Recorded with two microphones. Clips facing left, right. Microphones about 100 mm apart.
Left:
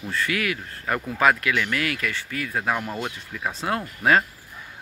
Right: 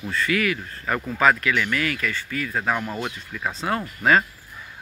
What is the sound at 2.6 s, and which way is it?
Speech, 10° left (ahead or behind).